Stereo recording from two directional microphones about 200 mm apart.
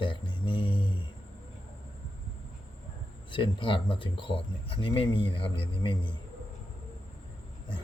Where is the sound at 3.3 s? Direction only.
25° left (ahead or behind).